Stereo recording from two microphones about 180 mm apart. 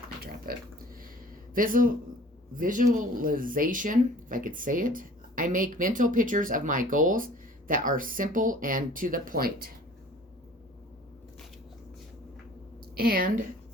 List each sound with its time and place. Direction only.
0.5 s speech: 55° right (ahead or behind)
13.0 s speech: 55° right (ahead or behind)